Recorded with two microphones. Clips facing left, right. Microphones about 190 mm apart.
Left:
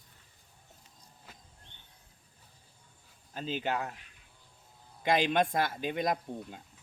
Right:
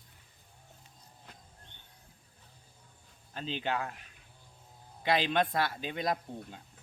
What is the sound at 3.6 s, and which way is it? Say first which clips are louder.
Speech: even; 10° left (ahead or behind).